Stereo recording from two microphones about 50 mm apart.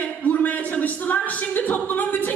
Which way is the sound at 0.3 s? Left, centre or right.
Left.